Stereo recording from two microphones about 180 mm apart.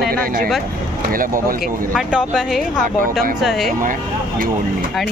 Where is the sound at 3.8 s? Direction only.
50° right (ahead or behind).